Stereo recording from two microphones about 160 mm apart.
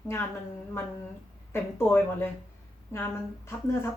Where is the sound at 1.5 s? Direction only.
15° left (ahead or behind).